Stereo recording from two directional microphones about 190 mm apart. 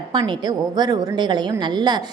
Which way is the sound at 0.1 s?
25° right (ahead or behind).